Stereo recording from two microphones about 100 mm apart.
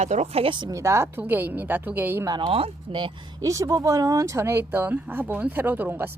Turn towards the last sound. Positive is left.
turn(degrees=-20)  # may be behind; listen again after turning